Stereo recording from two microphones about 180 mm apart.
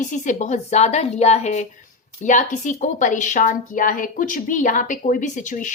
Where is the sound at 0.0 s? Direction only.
45° left (ahead or behind).